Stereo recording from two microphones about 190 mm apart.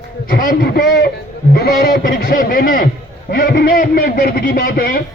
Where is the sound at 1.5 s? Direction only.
60° left (ahead or behind).